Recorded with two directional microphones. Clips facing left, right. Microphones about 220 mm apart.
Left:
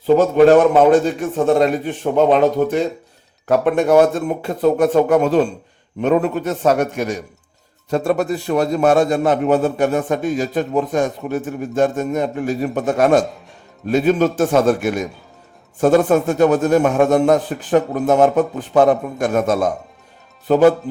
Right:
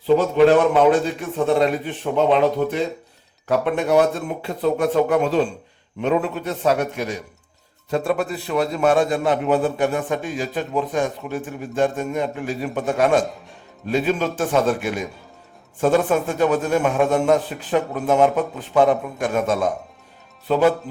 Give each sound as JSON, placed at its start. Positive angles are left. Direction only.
{"t": 0.2, "sound": "a man's voice", "side_deg": 45}